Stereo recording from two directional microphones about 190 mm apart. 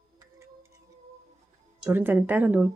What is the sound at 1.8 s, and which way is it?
Speech, 10° right (ahead or behind).